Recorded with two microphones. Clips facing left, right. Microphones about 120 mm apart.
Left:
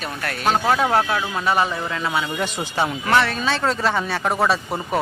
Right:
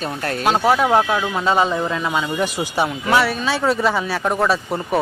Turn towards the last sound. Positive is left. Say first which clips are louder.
# right 1 dB
turn(degrees=0)  # may be behind; listen again after turning